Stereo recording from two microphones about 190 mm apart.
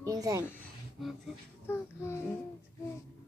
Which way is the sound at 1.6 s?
15° left (ahead or behind).